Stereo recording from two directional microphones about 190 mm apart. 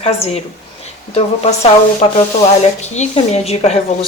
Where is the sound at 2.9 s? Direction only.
35° left (ahead or behind).